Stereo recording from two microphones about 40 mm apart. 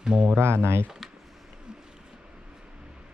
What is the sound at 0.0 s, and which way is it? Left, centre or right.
Speech, right.